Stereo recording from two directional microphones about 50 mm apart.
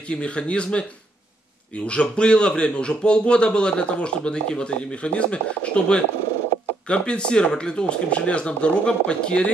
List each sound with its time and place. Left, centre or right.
0.1 s a man's voice: left
1.9 s a man's voice: left